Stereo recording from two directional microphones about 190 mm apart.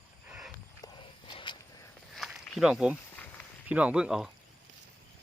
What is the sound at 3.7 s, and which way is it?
Speech, 5° right (ahead or behind).